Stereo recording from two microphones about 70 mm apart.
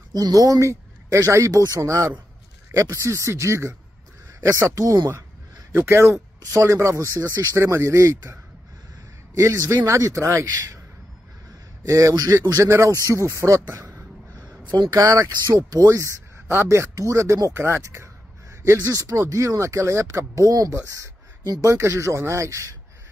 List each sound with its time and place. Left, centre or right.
0.1 s speech: right
5.7 s speech: right
9.4 s speech: right
11.8 s speech: right
14.7 s speech: right
15.0 s speech: right